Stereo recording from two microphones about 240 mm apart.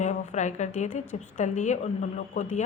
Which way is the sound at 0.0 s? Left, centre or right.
Left.